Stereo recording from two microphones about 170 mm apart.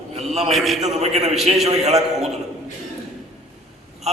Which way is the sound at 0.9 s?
40° right (ahead or behind).